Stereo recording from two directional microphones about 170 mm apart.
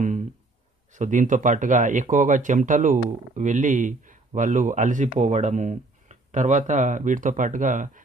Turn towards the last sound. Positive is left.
turn(degrees=-50)  # may be behind; listen again after turning